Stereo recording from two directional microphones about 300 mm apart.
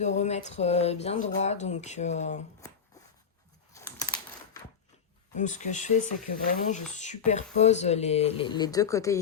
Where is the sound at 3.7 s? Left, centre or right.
Centre.